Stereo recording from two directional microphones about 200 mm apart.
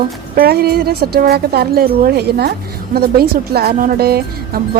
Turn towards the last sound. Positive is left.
turn(degrees=-50)  # may be behind; listen again after turning